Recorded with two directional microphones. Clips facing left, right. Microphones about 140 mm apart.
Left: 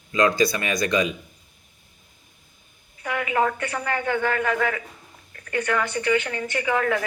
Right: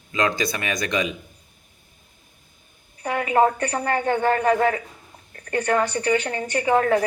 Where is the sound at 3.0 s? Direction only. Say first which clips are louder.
Right 4 dB; 35° right (ahead or behind).